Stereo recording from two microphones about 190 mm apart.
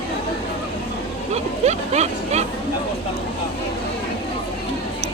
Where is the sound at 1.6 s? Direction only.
35° right (ahead or behind).